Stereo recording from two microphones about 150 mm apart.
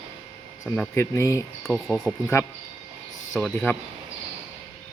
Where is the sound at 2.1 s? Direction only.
10° right (ahead or behind).